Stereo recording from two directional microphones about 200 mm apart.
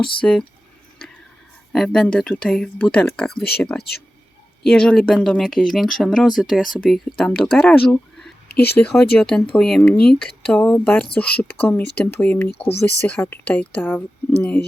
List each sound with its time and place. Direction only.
0.2 s speech: 5° left (ahead or behind)
1.7 s speech: centre (ahead or behind)
8.4 s speech: 55° left (ahead or behind)
8.8 s speech: 5° left (ahead or behind)